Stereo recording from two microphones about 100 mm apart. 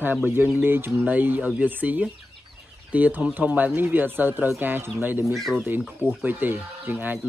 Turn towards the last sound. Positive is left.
turn(degrees=-20)  # may be behind; listen again after turning